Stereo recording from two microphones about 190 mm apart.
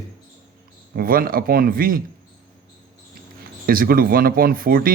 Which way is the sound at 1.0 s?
50° right (ahead or behind).